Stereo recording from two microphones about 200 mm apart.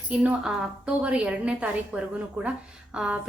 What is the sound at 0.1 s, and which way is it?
A woman's voice, 5° right (ahead or behind).